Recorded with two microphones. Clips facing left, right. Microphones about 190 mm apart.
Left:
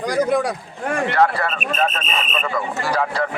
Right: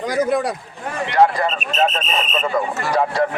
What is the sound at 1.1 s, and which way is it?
Speech, 15° right (ahead or behind).